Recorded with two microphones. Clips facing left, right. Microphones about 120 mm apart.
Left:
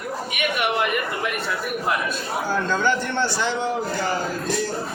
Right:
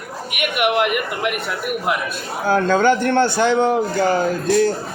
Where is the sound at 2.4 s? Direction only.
55° right (ahead or behind).